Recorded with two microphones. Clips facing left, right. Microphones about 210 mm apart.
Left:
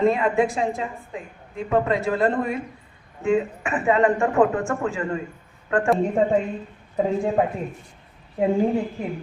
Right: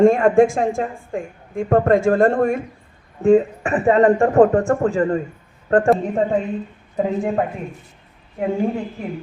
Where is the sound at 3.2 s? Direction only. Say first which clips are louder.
Right 7 dB; 40° right (ahead or behind).